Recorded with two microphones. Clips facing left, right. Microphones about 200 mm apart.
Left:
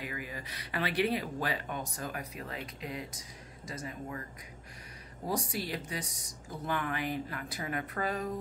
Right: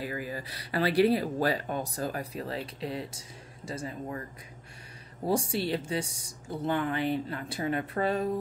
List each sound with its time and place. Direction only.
0.0 s speech: 35° right (ahead or behind)
5.2 s speech: 30° right (ahead or behind)